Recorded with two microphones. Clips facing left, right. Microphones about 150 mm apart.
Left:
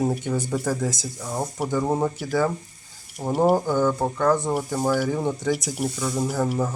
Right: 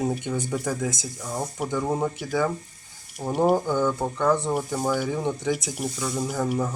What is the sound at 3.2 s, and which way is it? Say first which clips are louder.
Speech: left 2 dB; 10° left (ahead or behind).